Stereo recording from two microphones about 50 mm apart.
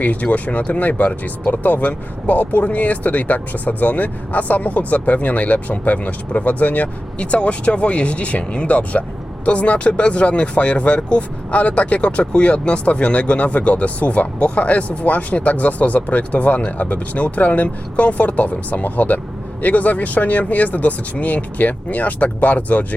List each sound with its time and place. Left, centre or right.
0.0 s speech: left